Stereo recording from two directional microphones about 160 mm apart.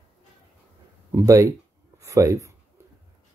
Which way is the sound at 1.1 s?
20° right (ahead or behind).